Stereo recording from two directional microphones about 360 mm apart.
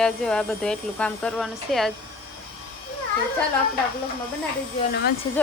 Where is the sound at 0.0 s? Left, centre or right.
Centre.